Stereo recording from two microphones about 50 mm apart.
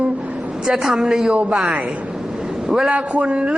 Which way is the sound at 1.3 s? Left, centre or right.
Right.